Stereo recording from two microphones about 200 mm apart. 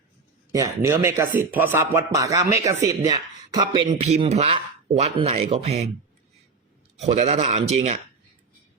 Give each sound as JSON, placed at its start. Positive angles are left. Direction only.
{"t": 0.5, "sound": "speech", "side_deg": -15}
{"t": 3.8, "sound": "speech", "side_deg": -35}
{"t": 7.0, "sound": "speech", "side_deg": -35}